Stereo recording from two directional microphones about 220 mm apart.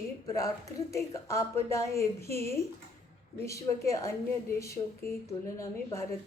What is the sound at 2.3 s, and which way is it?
Speech, 30° right (ahead or behind).